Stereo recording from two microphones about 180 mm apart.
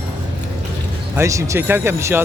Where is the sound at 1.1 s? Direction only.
15° right (ahead or behind).